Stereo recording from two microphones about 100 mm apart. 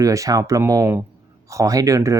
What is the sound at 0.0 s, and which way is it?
Speech, 35° right (ahead or behind).